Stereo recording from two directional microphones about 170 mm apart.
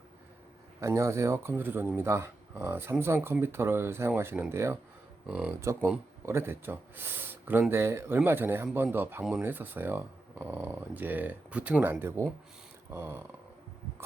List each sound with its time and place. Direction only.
0.8 s speech: 15° right (ahead or behind)